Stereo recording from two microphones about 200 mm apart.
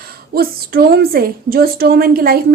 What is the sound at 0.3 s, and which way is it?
A woman's voice, 50° right (ahead or behind).